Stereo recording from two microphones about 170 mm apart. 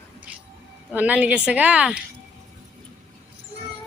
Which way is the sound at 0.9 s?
10° right (ahead or behind).